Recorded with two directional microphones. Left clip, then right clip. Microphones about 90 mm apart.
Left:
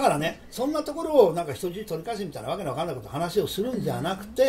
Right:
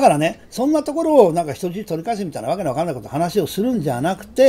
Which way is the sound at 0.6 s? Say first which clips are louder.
Right 9 dB; 50° right (ahead or behind).